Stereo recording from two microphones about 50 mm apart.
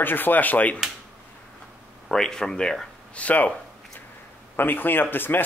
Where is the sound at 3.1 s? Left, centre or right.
Left.